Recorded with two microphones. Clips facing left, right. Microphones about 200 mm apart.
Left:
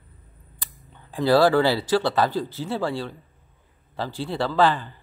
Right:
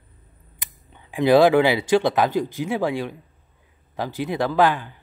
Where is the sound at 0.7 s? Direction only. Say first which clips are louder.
Right 2 dB; 15° right (ahead or behind).